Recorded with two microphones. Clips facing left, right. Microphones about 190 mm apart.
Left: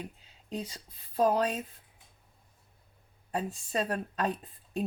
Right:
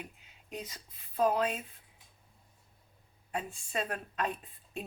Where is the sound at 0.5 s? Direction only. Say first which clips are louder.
Left 5 dB; 30° left (ahead or behind).